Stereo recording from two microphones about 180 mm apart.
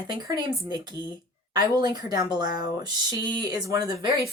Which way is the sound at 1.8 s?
25° right (ahead or behind).